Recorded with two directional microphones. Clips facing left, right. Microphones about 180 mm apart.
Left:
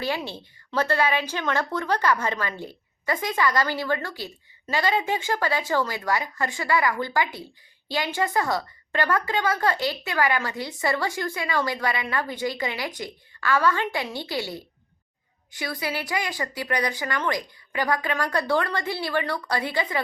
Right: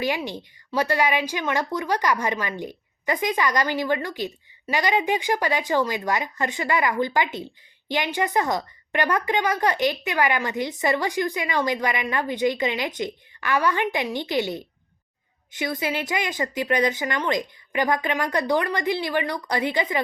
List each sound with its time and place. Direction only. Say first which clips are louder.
0.0 s a woman's voice: right 3 dB; 15° right (ahead or behind)